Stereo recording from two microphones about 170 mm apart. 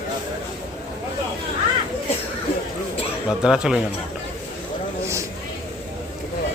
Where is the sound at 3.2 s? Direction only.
5° right (ahead or behind).